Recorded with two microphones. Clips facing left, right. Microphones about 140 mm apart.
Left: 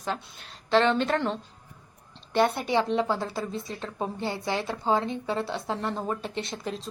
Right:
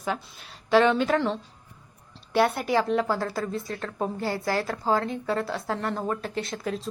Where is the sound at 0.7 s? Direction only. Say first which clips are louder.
Right 2 dB; 10° right (ahead or behind).